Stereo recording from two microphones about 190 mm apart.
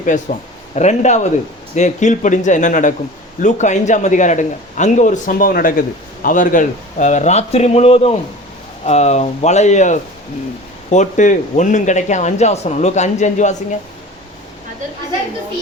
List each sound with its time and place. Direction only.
0.0 s speech: 45° left (ahead or behind)